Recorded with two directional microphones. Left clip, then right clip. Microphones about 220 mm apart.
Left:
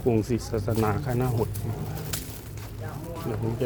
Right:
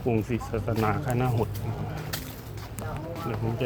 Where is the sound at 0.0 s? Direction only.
25° left (ahead or behind).